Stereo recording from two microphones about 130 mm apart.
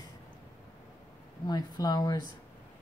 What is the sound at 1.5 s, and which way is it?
Speech, 30° left (ahead or behind).